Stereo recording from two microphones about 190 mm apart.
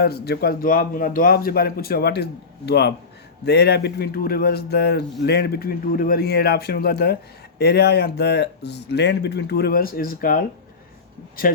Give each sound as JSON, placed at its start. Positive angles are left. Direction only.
{"t": 0.0, "sound": "a man's voice", "side_deg": 55}